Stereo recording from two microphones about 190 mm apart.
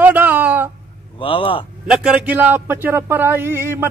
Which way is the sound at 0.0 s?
10° right (ahead or behind).